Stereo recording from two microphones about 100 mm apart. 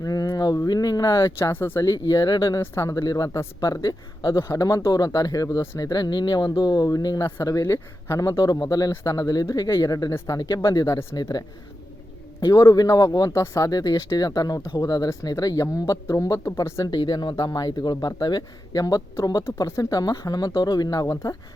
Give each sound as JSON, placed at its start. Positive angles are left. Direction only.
{"t": 0.0, "sound": "speech", "side_deg": 40}
{"t": 1.8, "sound": "speech", "side_deg": 35}
{"t": 2.6, "sound": "speech", "side_deg": 30}
{"t": 16.9, "sound": "speech", "side_deg": 45}